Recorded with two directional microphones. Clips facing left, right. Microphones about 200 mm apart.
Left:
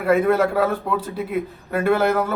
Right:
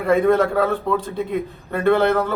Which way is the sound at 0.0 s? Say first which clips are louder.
Right 1 dB; 5° left (ahead or behind).